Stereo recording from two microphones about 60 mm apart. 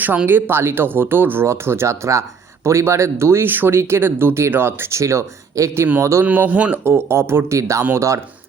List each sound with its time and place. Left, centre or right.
0.3 s speech: right
3.5 s speech: right
6.2 s speech: right
6.8 s speech: right